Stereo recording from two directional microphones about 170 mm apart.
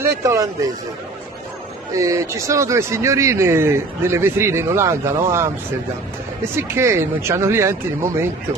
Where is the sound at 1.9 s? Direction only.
20° right (ahead or behind).